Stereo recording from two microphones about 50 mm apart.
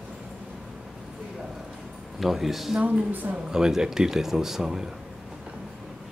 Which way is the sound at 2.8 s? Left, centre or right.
Right.